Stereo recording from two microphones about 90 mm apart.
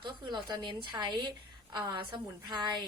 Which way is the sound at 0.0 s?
55° right (ahead or behind).